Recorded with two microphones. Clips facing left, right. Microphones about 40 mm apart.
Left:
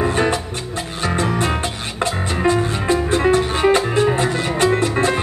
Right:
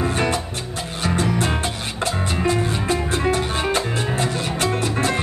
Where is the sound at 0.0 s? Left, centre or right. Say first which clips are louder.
Left 3 dB; left.